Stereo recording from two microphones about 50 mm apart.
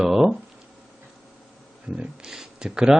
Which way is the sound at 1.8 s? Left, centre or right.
Centre.